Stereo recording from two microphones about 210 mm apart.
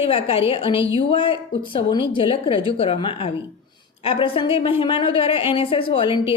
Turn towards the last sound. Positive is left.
turn(degrees=25)  # may be behind; listen again after turning